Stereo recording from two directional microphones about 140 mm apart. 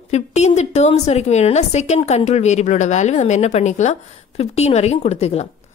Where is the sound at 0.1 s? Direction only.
55° left (ahead or behind).